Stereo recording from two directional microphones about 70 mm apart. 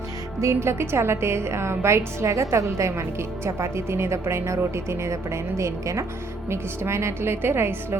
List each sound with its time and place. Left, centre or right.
0.3 s a woman's voice: right